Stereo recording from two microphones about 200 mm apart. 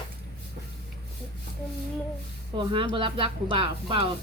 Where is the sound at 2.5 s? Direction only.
25° right (ahead or behind).